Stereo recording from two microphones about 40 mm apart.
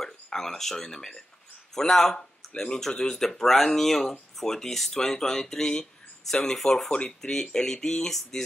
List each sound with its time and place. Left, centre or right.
0.0 s a sound: centre
0.7 s speech: centre
6.9 s speech: left
7.2 s speech: centre